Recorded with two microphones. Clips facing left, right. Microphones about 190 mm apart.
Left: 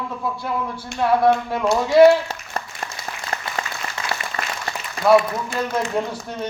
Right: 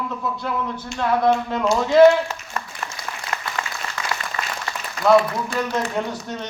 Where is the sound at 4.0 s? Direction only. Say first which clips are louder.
Even; 30° left (ahead or behind).